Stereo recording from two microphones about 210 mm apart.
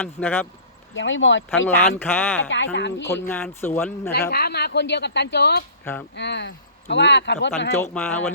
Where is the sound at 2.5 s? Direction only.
60° left (ahead or behind).